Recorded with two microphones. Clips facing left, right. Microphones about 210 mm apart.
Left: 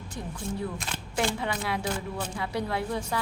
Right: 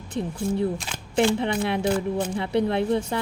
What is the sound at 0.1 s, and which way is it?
Speech, 25° right (ahead or behind).